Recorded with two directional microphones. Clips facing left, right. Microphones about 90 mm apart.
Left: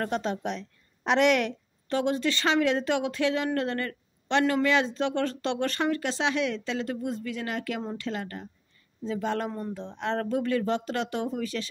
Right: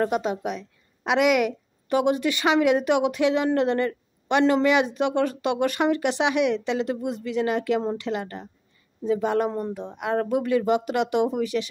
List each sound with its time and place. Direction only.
0.0 s a woman's voice: 10° right (ahead or behind)